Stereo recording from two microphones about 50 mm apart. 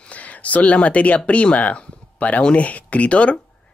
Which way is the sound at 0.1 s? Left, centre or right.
Left.